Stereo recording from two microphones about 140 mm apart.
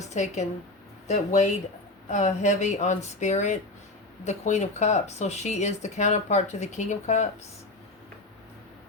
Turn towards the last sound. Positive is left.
turn(degrees=60)  # may be behind; listen again after turning